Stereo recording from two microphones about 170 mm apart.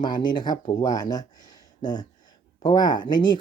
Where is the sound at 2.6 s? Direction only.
25° left (ahead or behind).